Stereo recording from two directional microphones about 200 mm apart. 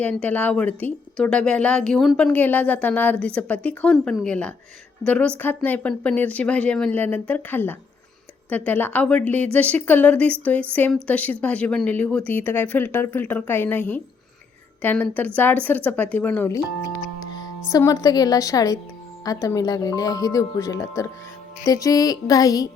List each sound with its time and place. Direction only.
0.0 s a woman's voice: 5° left (ahead or behind)
17.2 s music: 20° left (ahead or behind)
17.7 s speech: 15° left (ahead or behind)